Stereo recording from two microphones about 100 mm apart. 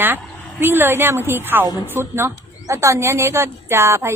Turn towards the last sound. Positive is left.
turn(degrees=-25)  # may be behind; listen again after turning